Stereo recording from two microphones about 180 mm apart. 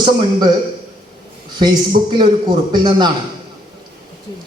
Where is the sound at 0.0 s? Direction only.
25° right (ahead or behind).